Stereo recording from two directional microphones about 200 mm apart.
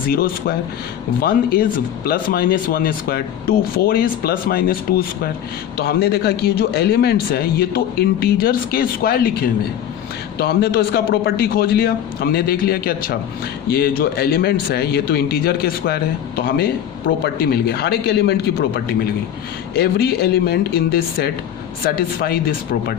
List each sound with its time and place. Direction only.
0.1 s a man's voice: 50° left (ahead or behind)